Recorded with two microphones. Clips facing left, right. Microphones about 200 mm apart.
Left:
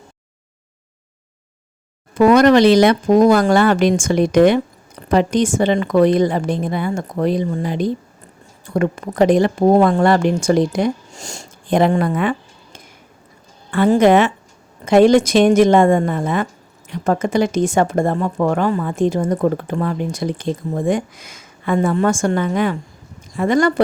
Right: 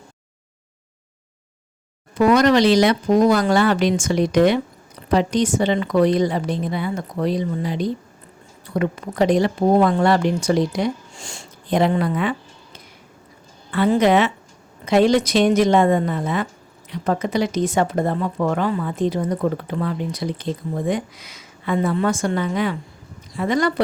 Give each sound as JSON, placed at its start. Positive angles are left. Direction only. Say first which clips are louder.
{"t": 2.1, "sound": "a woman's voice", "louder": "left 4 dB", "side_deg": 55}